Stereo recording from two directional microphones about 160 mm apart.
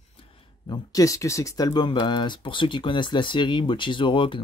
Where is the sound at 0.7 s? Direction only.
20° left (ahead or behind).